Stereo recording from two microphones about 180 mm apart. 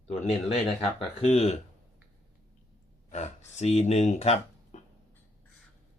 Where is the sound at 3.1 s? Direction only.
40° left (ahead or behind).